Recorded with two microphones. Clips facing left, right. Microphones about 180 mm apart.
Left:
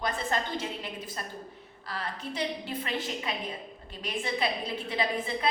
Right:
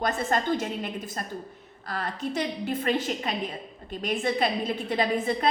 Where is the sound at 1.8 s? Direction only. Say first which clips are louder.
Right 5 dB; 45° right (ahead or behind).